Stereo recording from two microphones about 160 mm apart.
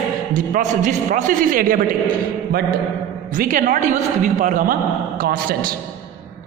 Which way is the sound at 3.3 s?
55° right (ahead or behind).